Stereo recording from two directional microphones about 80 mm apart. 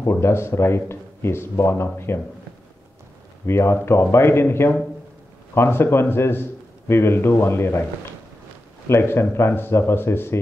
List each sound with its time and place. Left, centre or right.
0.0 s speech: left
3.4 s a man's voice: left
8.8 s speech: left